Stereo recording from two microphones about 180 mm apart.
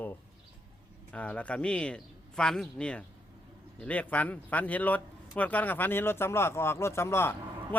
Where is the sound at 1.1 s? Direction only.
5° left (ahead or behind).